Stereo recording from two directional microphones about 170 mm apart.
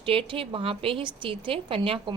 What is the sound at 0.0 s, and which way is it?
A woman's voice, 30° right (ahead or behind).